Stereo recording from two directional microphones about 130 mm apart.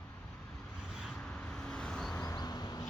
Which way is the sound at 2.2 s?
30° left (ahead or behind).